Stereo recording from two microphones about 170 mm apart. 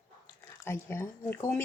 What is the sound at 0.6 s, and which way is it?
Speech, 15° left (ahead or behind).